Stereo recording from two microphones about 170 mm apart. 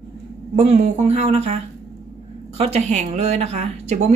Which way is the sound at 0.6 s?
40° right (ahead or behind).